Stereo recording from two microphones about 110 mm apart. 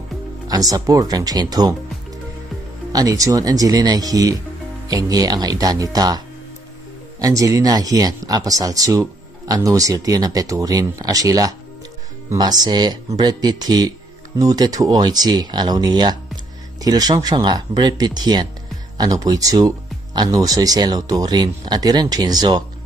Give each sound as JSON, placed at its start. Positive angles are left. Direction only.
{"t": 0.5, "sound": "speech", "side_deg": -35}
{"t": 2.9, "sound": "speech", "side_deg": -35}